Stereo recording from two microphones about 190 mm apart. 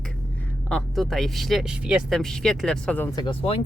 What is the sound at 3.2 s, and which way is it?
Speech, 30° left (ahead or behind).